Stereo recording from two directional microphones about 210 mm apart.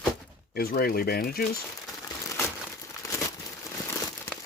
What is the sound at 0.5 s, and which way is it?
Speech, 45° left (ahead or behind).